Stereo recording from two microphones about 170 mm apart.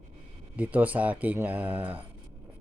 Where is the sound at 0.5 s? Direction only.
10° right (ahead or behind).